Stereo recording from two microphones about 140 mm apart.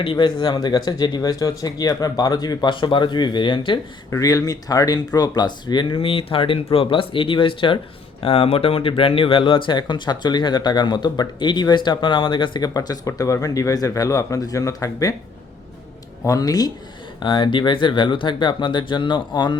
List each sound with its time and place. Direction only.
0.0 s speech: 40° left (ahead or behind)
4.1 s speech: 25° left (ahead or behind)
16.2 s speech: 25° left (ahead or behind)